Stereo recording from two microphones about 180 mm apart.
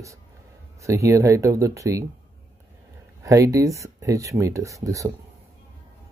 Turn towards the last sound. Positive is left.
turn(degrees=-20)  # may be behind; listen again after turning